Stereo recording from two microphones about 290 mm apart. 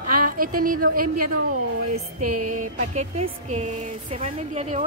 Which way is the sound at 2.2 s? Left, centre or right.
Right.